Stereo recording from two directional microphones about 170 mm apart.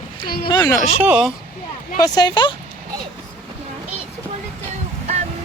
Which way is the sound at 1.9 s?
20° left (ahead or behind).